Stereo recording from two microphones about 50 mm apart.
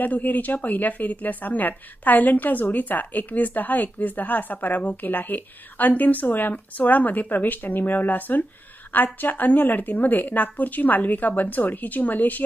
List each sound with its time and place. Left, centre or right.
0.0 s speech: left